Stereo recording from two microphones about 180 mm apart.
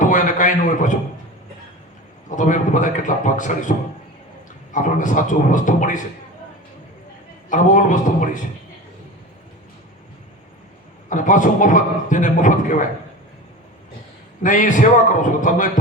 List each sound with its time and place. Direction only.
0.0 s a sound: 45° left (ahead or behind)
2.3 s a man's voice: 45° left (ahead or behind)
7.5 s a man's voice: 45° left (ahead or behind)
11.1 s a man's voice: 45° left (ahead or behind)
14.4 s a man's voice: 45° left (ahead or behind)